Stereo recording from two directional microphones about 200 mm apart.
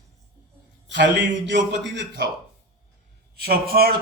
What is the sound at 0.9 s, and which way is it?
Speech, 60° right (ahead or behind).